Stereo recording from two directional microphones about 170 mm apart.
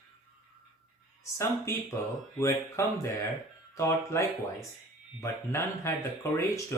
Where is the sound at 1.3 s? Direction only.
15° left (ahead or behind).